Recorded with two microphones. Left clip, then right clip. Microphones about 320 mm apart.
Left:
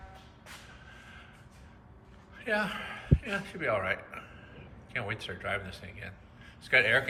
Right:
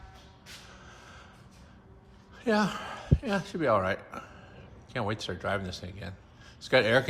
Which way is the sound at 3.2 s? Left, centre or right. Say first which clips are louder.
Right 6 dB; centre.